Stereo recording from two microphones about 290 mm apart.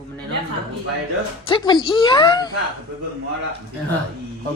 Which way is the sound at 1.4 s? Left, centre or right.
Centre.